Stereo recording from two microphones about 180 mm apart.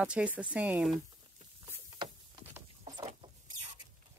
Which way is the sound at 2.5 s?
20° right (ahead or behind).